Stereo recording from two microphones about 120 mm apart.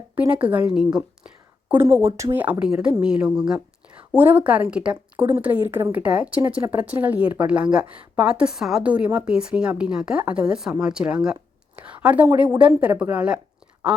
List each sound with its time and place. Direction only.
0.2 s speech: 10° right (ahead or behind)
1.7 s speech: 20° right (ahead or behind)
2.4 s a woman's voice: 10° right (ahead or behind)